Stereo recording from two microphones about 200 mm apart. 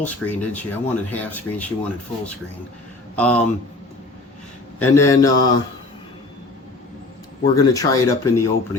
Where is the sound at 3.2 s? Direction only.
5° left (ahead or behind).